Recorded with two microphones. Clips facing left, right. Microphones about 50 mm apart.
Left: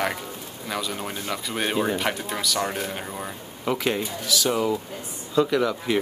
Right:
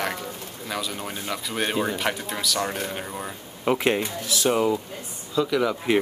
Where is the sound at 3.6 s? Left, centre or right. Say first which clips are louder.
Right 3 dB; right.